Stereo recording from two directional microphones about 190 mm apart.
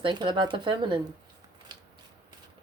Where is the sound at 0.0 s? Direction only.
25° right (ahead or behind).